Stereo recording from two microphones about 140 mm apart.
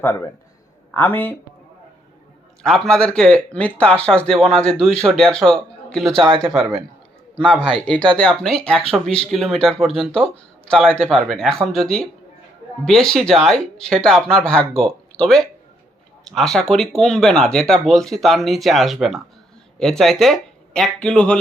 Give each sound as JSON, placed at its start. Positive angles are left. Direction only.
{"t": 0.0, "sound": "speech", "side_deg": 15}
{"t": 2.6, "sound": "speech", "side_deg": 5}
{"t": 7.6, "sound": "speech", "side_deg": 5}